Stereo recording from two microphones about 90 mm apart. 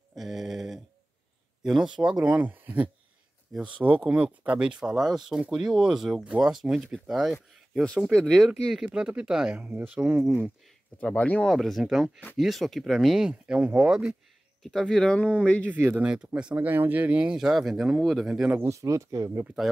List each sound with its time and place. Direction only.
0.1 s a sound: centre (ahead or behind)
1.6 s speech: 5° right (ahead or behind)
8.1 s speech: 5° left (ahead or behind)
8.8 s speech: 10° right (ahead or behind)
11.0 s speech: 15° left (ahead or behind)
11.4 s speech: centre (ahead or behind)
14.6 s speech: 5° left (ahead or behind)
15.6 s speech: 20° right (ahead or behind); by 18.6 s 5° right (ahead or behind)
18.7 s speech: 35° right (ahead or behind)